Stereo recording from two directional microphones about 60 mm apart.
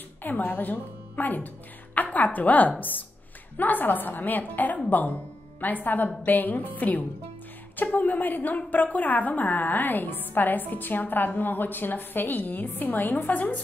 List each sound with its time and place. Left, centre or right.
0.2 s a woman's voice: left